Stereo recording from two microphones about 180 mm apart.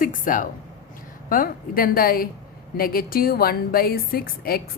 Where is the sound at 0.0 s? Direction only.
50° left (ahead or behind).